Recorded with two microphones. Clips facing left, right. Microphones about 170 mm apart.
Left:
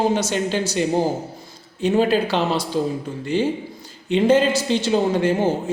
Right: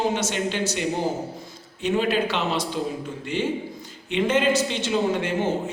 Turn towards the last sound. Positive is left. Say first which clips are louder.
# left 5 dB
turn(degrees=35)  # may be behind; listen again after turning